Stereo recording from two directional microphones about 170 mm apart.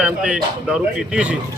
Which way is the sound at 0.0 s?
5° right (ahead or behind).